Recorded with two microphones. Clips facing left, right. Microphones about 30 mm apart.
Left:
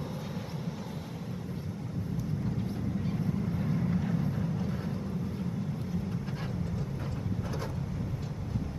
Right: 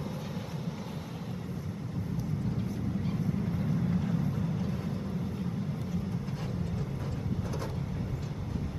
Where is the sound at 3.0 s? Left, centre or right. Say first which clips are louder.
Even; centre.